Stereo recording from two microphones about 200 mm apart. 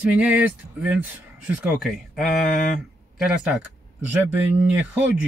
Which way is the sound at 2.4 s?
40° left (ahead or behind).